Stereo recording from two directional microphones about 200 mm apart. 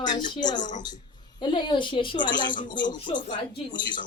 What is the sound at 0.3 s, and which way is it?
Speech, 20° left (ahead or behind).